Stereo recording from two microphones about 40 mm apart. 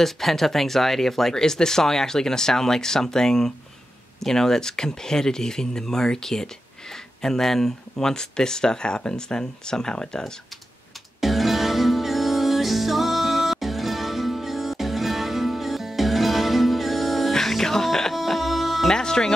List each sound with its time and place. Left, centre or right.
0.0 s speech: centre
11.1 s music: centre
18.1 s music: centre
18.9 s music: centre